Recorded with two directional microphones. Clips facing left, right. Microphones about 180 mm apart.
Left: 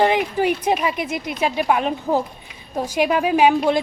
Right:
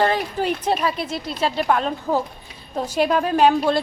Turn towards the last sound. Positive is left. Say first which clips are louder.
# left 1 dB
turn(degrees=15)  # may be behind; listen again after turning